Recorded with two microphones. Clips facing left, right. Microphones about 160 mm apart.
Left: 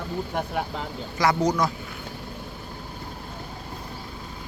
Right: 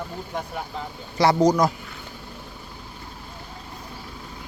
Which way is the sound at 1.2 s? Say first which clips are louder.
Right 4 dB; 35° right (ahead or behind).